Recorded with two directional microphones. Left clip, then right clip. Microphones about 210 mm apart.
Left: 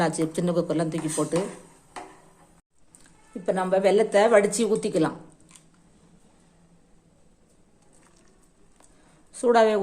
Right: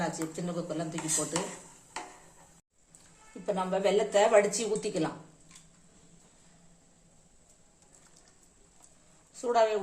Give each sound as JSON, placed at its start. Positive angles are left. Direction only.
{"t": 0.0, "sound": "speech", "side_deg": 45}
{"t": 3.4, "sound": "speech", "side_deg": 30}
{"t": 9.3, "sound": "a woman's voice", "side_deg": 40}